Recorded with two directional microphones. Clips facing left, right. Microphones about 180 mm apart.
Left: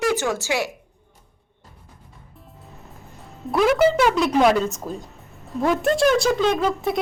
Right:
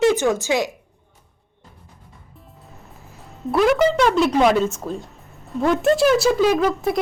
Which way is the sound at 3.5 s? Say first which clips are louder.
Right 1 dB; centre (ahead or behind).